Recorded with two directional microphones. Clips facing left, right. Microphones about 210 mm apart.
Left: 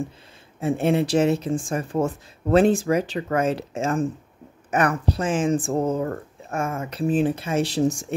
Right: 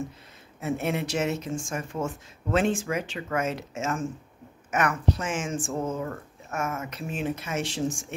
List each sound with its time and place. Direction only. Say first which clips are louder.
0.6 s speech: left 7 dB; 30° left (ahead or behind)